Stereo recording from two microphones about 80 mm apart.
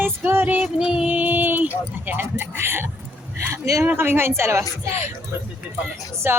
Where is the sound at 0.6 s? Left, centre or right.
Centre.